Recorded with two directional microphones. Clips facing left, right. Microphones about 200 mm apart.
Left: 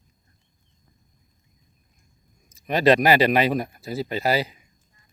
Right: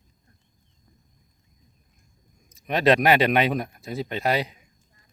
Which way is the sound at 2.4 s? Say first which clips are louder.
Left 2 dB; centre (ahead or behind).